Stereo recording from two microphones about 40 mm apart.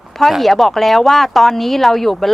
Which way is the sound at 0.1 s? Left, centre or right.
Centre.